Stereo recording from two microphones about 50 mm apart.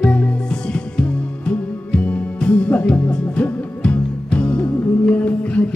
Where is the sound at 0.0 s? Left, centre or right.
Left.